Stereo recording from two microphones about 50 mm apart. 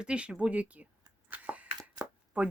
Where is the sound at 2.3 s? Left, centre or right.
Right.